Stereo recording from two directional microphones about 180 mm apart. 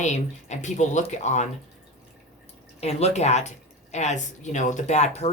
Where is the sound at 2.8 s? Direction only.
35° left (ahead or behind).